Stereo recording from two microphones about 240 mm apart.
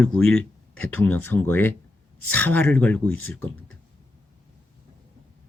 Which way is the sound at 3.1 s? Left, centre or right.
Left.